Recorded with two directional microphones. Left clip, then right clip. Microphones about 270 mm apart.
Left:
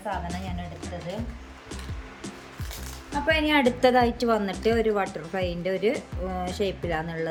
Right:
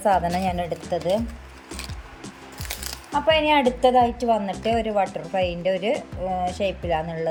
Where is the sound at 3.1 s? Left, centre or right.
Centre.